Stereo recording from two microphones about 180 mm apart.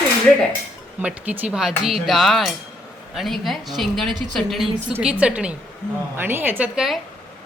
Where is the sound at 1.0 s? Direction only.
10° right (ahead or behind).